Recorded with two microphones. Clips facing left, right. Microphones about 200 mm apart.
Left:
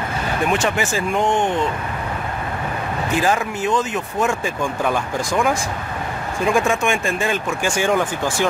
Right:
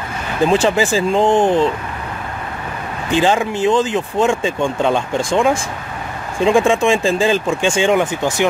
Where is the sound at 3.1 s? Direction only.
25° right (ahead or behind).